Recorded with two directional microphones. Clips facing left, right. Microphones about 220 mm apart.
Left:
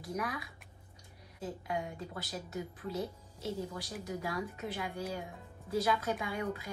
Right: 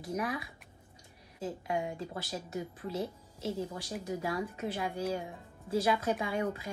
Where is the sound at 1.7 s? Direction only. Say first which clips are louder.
Right 4 dB; 25° right (ahead or behind).